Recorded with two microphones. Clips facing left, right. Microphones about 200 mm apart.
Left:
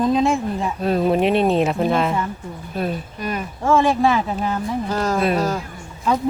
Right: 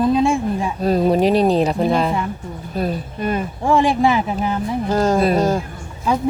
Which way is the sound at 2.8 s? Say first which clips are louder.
Right 3 dB; 30° right (ahead or behind).